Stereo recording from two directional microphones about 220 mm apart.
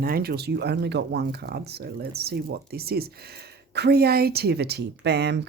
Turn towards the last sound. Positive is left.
turn(degrees=-50)  # may be behind; listen again after turning